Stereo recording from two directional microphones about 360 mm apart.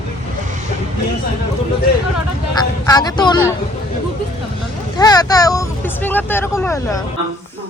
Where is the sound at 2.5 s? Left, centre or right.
Centre.